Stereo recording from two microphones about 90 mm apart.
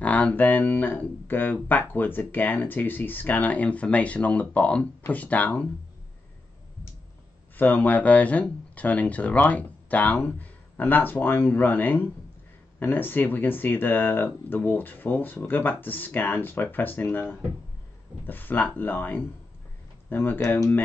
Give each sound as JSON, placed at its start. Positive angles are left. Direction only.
{"t": 0.0, "sound": "speech", "side_deg": 15}
{"t": 7.5, "sound": "speech", "side_deg": 20}